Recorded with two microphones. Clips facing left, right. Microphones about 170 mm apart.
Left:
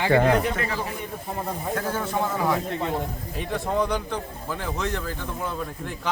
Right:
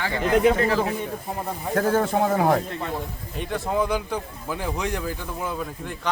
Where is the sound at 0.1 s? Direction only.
55° left (ahead or behind).